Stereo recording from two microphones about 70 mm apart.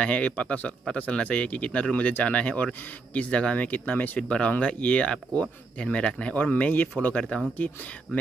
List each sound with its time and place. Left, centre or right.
0.0 s speech: centre